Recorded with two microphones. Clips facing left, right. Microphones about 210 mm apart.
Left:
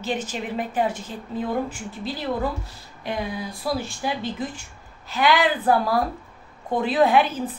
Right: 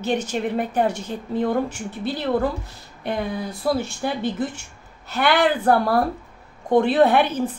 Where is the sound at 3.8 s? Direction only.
70° right (ahead or behind).